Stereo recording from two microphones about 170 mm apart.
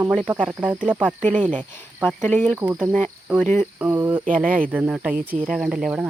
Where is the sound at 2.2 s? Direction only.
10° left (ahead or behind).